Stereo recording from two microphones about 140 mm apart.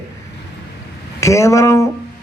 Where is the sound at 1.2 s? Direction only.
20° left (ahead or behind).